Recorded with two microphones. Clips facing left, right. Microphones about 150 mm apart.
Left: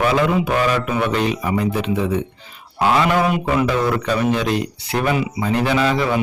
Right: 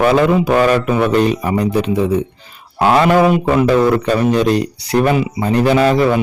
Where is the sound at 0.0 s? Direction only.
45° right (ahead or behind).